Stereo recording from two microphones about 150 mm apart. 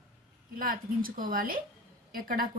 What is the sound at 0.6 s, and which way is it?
Speech, 65° right (ahead or behind).